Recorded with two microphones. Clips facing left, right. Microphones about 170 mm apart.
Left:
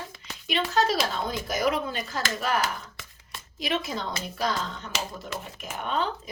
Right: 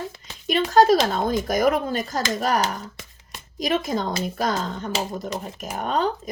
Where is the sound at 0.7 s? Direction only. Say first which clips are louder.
Right 10 dB; 45° right (ahead or behind).